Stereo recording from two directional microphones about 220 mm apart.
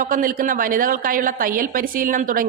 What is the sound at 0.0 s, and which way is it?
A woman's voice, 40° right (ahead or behind).